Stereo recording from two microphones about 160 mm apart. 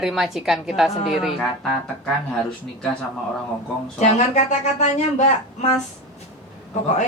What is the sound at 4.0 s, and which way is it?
A woman's voice, 50° left (ahead or behind).